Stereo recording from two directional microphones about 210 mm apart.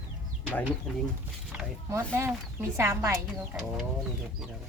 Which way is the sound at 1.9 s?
10° right (ahead or behind).